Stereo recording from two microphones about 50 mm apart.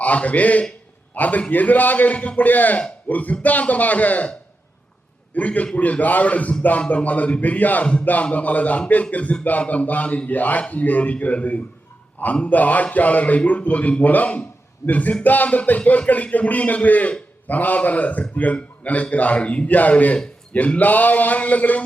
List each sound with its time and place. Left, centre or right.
0.0 s a man's voice: left
5.3 s a man's voice: left